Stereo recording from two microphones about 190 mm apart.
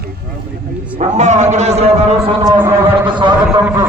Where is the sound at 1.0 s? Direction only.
40° right (ahead or behind).